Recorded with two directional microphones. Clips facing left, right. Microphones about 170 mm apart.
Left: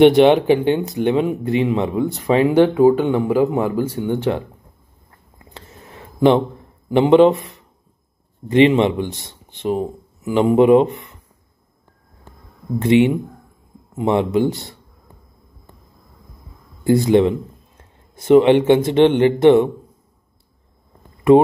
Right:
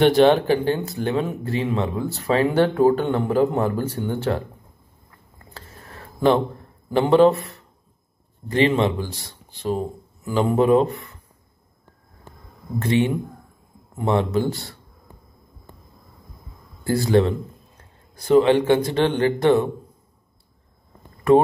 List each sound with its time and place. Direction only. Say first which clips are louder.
0.0 s a man's voice: left 4 dB; 20° left (ahead or behind)
5.5 s a sound: left 2 dB; 20° left (ahead or behind)
6.9 s speech: left 4 dB; 20° left (ahead or behind)
8.5 s speech: left 6 dB; 20° left (ahead or behind)
12.7 s speech: left 6 dB; 20° left (ahead or behind)
16.8 s speech: left 5 dB; 20° left (ahead or behind)